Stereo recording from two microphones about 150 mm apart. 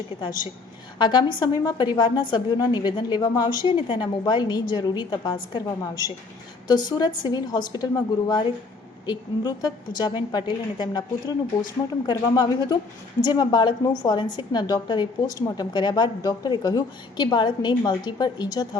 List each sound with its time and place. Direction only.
0.9 s a woman's voice: 30° left (ahead or behind)